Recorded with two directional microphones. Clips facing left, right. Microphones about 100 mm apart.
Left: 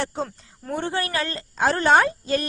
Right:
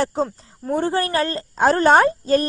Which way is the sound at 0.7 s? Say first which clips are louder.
Right 6 dB; 35° right (ahead or behind).